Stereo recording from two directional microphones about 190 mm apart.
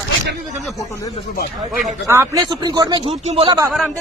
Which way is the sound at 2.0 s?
15° right (ahead or behind).